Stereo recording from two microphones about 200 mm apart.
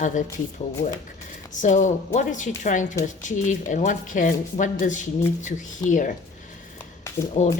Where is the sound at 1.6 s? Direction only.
35° left (ahead or behind).